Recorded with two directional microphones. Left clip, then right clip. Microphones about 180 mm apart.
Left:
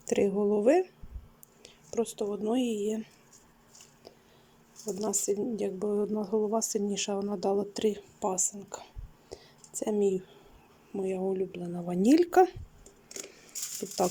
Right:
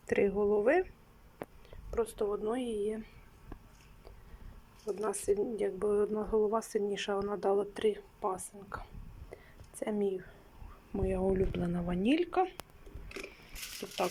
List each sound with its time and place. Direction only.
0.0 s a woman's voice: 15° left (ahead or behind); by 3.1 s 30° left (ahead or behind)
4.9 s a woman's voice: 20° left (ahead or behind)
9.3 s a sound: 20° left (ahead or behind)
10.9 s speech: 15° left (ahead or behind)
12.0 s speech: 35° left (ahead or behind)